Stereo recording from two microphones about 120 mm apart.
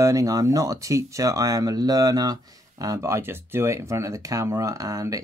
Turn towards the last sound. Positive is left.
turn(degrees=-30)  # may be behind; listen again after turning